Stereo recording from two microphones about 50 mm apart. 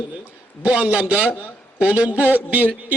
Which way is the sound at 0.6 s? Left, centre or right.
Right.